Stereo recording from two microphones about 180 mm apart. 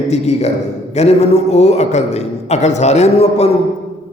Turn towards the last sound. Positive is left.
turn(degrees=35)  # may be behind; listen again after turning